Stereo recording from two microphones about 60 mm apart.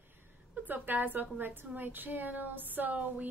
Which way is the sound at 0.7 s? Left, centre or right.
Right.